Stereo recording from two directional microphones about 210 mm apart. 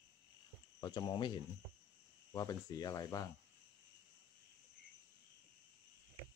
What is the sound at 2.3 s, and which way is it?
Speech, 15° left (ahead or behind).